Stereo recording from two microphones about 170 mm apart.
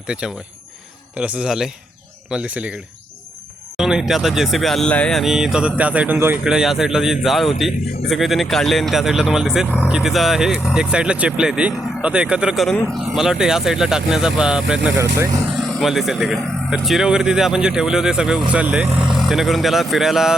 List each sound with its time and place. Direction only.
0.1 s speech: 5° right (ahead or behind)
12.7 s speech: 10° left (ahead or behind)
13.1 s speech: 5° right (ahead or behind)
14.9 s speech: 15° right (ahead or behind)
15.8 s speech: centre (ahead or behind)